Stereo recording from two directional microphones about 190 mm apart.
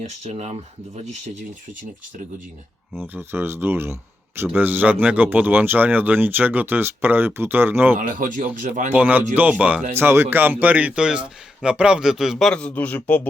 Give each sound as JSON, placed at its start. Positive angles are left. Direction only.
{"t": 0.0, "sound": "speech", "side_deg": -35}
{"t": 3.1, "sound": "speech", "side_deg": -10}
{"t": 7.9, "sound": "speech", "side_deg": -45}
{"t": 8.9, "sound": "a man's voice", "side_deg": -10}